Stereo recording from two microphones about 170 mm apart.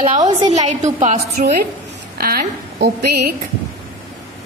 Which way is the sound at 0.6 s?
45° right (ahead or behind).